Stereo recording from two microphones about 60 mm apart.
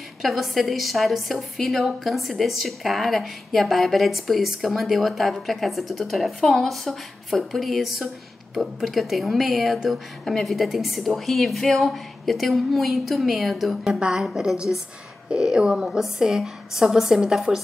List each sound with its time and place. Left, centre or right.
0.2 s a woman's voice: centre
13.9 s a woman's voice: centre
14.2 s a woman's voice: centre